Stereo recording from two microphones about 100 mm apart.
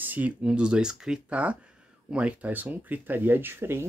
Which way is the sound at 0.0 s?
15° right (ahead or behind).